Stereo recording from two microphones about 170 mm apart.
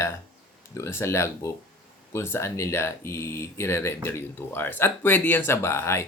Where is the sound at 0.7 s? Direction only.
15° left (ahead or behind).